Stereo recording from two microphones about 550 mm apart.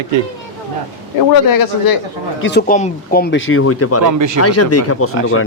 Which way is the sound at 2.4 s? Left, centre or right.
Centre.